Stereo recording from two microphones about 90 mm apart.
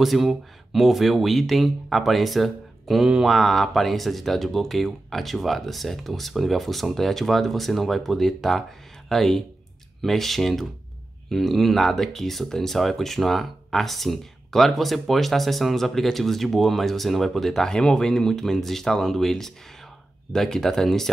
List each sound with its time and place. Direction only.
0.0 s speech: centre (ahead or behind)